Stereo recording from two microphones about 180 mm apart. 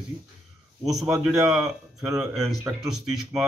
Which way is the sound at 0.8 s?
Centre (ahead or behind).